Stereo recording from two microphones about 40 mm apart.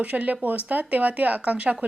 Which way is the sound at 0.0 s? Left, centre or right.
Right.